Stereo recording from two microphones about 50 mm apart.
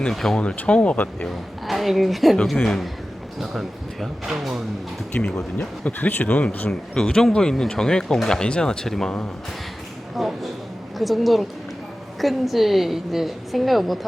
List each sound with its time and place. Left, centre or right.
0.1 s a woman's voice: centre
0.3 s speech: left
1.6 s a woman's voice: centre
3.4 s a woman's voice: centre
5.1 s speech: centre
5.5 s speech: left
6.7 s speech: centre
10.2 s a sound: centre
10.9 s a woman's voice: centre